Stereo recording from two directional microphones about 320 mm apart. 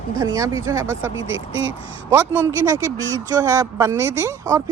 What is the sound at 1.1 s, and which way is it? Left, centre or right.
Speech, right.